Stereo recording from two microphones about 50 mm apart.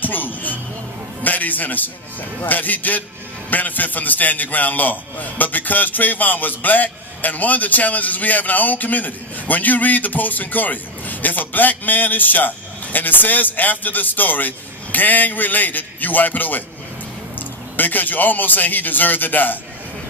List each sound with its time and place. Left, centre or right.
0.0 s a man's voice: left